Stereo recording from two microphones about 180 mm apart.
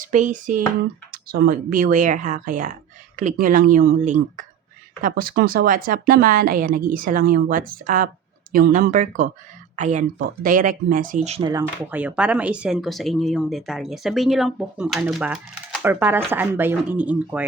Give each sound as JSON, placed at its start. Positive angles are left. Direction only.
{"t": 0.0, "sound": "speech", "side_deg": -45}
{"t": 1.1, "sound": "speech", "side_deg": -55}
{"t": 11.9, "sound": "speech", "side_deg": -10}